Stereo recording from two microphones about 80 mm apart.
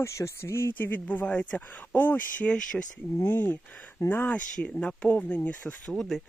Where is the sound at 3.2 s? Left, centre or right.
Left.